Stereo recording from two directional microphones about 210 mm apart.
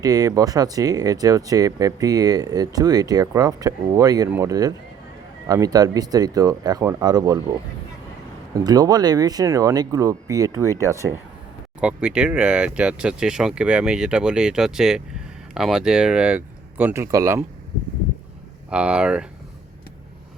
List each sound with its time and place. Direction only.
0.0 s speech: 15° right (ahead or behind)
8.5 s speech: 20° right (ahead or behind)
18.7 s speech: 5° right (ahead or behind)